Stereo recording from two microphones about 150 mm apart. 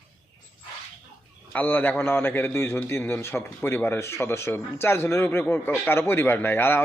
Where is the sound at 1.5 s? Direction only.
10° left (ahead or behind).